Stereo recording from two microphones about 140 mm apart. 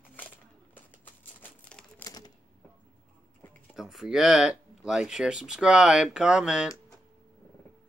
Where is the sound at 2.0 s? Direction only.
25° left (ahead or behind).